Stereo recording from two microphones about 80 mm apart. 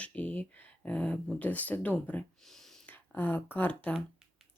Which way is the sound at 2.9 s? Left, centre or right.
Left.